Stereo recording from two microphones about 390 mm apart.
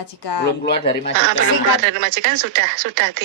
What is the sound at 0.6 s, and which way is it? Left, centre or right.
Speech, left.